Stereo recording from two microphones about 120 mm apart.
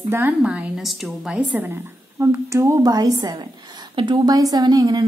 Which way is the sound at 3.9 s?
45° right (ahead or behind).